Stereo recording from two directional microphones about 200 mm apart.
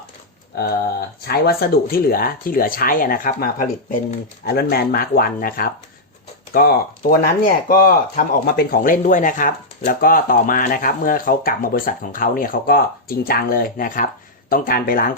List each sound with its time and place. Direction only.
1.3 s speech: 50° left (ahead or behind)